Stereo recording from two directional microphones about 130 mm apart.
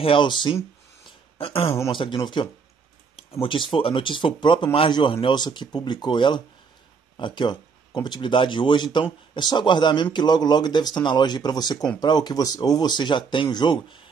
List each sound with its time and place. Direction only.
0.0 s speech: 40° left (ahead or behind)